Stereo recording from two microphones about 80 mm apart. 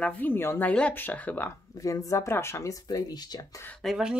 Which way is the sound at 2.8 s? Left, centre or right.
Left.